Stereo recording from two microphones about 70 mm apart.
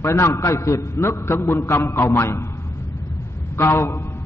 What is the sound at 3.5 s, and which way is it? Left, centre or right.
Speech, left.